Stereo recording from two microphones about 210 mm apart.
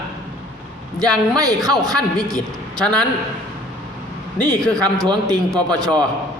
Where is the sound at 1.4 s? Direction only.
15° right (ahead or behind).